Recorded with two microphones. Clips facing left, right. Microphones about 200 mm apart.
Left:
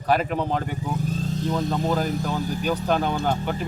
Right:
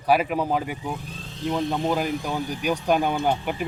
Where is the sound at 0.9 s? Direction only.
40° left (ahead or behind).